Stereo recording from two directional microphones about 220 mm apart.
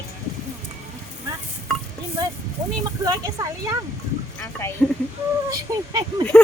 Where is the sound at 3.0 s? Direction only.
15° right (ahead or behind).